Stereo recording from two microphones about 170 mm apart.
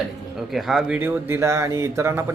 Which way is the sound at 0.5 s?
Centre (ahead or behind).